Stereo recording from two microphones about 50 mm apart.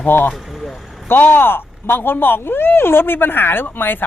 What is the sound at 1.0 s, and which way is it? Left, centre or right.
Speech, left.